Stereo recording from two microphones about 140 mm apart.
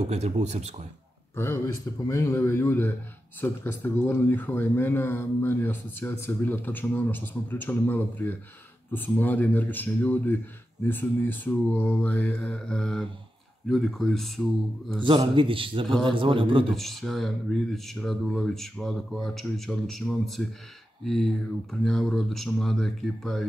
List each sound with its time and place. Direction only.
0.0 s speech: 50° right (ahead or behind)
1.3 s a man's voice: 15° left (ahead or behind)
15.0 s a man's voice: 35° right (ahead or behind)
16.7 s speech: centre (ahead or behind)